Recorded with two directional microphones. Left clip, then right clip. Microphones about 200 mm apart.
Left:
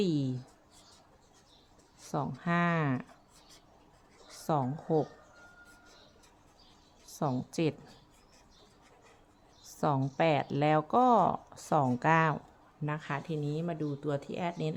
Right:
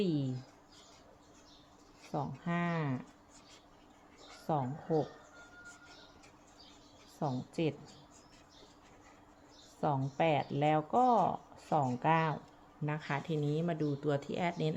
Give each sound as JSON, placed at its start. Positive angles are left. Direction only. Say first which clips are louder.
{"t": 0.0, "sound": "speech", "louder": "left 3 dB", "side_deg": 25}
{"t": 2.1, "sound": "speech", "louder": "left 5 dB", "side_deg": 20}
{"t": 4.4, "sound": "speech", "louder": "left 4 dB", "side_deg": 25}
{"t": 7.2, "sound": "speech", "louder": "left 4 dB", "side_deg": 25}
{"t": 9.8, "sound": "speech", "louder": "left 3 dB", "side_deg": 25}
{"t": 12.8, "sound": "speech", "louder": "left 1 dB", "side_deg": 10}